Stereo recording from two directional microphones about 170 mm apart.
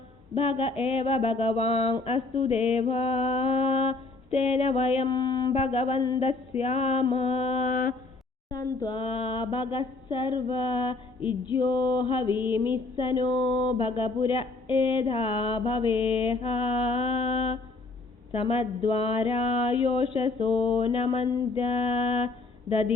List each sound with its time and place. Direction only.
0.3 s speech: 35° left (ahead or behind); by 7.9 s 50° left (ahead or behind)
8.4 s mantra: 25° left (ahead or behind)
13.0 s speech: 30° left (ahead or behind)